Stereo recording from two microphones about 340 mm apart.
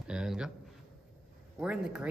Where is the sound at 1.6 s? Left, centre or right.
Centre.